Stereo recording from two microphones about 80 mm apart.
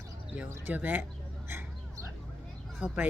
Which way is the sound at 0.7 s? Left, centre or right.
Right.